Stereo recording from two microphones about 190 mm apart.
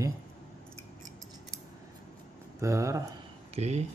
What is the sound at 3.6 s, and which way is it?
Speech, 35° right (ahead or behind).